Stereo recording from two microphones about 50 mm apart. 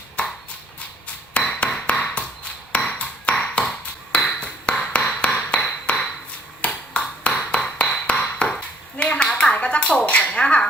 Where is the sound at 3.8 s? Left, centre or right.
Left.